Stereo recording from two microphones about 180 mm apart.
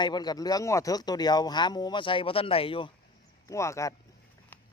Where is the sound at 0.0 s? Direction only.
25° left (ahead or behind).